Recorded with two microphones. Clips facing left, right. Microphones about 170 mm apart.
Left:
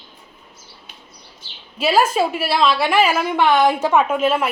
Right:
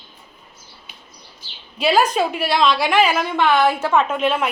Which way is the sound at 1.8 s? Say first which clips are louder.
Even; 5° left (ahead or behind).